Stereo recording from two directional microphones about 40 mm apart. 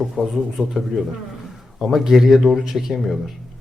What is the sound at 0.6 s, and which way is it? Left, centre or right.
Speech, right.